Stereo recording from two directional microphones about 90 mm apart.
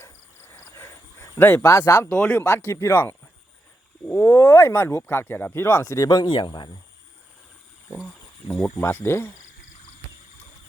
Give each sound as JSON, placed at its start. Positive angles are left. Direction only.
{"t": 0.0, "sound": "a sound", "side_deg": 25}
{"t": 1.6, "sound": "speech", "side_deg": 40}
{"t": 2.2, "sound": "speech", "side_deg": 10}
{"t": 2.6, "sound": "speech", "side_deg": 25}
{"t": 7.9, "sound": "speech", "side_deg": 5}
{"t": 8.7, "sound": "speech", "side_deg": 30}